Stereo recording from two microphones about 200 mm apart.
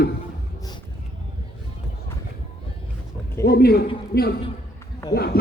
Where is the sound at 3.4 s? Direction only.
50° left (ahead or behind).